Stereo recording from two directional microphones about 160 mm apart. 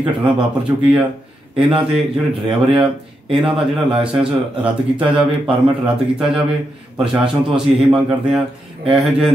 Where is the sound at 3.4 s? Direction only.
Centre (ahead or behind).